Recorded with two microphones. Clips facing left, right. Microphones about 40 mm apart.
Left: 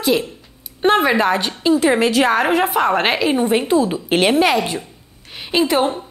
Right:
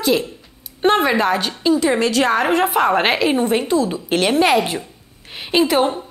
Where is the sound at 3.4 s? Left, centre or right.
Centre.